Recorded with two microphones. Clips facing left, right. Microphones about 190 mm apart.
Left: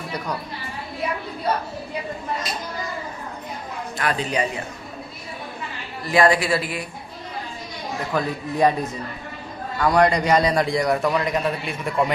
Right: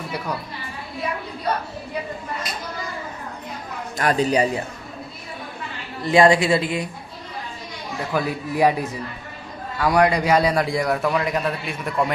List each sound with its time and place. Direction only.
4.0 s a man's voice: 40° right (ahead or behind)
6.0 s a woman's voice: 25° right (ahead or behind)
8.1 s a man's voice: 10° right (ahead or behind)